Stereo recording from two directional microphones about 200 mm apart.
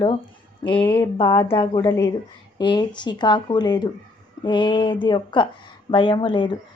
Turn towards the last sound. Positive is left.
turn(degrees=20)  # may be behind; listen again after turning